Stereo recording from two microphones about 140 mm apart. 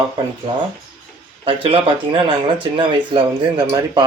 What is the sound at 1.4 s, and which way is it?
Speech, 40° right (ahead or behind).